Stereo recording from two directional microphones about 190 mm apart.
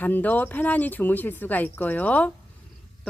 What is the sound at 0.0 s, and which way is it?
Speech, 10° left (ahead or behind).